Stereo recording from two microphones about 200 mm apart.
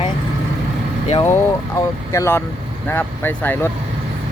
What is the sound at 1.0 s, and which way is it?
Speech, 30° left (ahead or behind).